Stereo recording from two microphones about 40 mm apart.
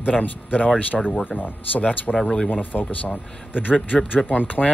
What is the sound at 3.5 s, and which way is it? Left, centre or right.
Speech, left.